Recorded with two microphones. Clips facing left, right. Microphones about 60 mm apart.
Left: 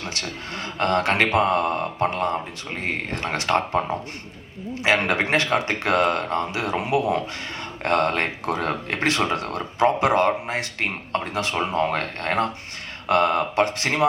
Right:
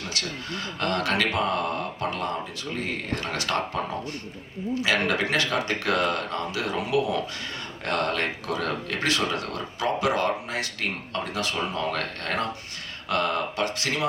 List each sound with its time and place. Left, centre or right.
0.0 s speech: left